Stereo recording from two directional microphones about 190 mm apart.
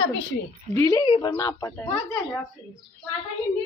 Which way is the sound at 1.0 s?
25° left (ahead or behind).